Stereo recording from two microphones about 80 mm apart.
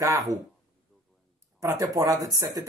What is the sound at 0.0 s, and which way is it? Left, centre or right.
Speech, right.